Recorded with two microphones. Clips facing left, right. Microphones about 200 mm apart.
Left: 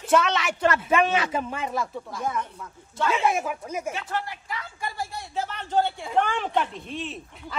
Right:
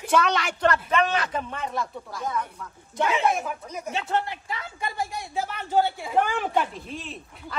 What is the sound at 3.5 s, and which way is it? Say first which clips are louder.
Speech: left 3 dB; 5° left (ahead or behind).